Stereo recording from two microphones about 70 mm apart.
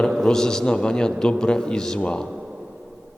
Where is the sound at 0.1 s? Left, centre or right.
Centre.